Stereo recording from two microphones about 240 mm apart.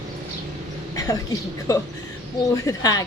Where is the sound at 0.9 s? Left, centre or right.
Centre.